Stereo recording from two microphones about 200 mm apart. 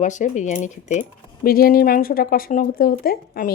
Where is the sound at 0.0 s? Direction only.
40° left (ahead or behind).